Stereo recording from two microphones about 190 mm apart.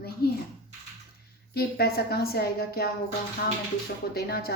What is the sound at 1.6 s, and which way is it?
A woman's voice, 55° left (ahead or behind).